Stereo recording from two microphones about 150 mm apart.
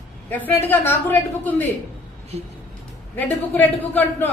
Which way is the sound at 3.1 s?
10° left (ahead or behind).